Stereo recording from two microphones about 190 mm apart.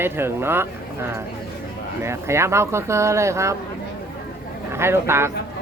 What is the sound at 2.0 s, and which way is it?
Speech, 15° right (ahead or behind).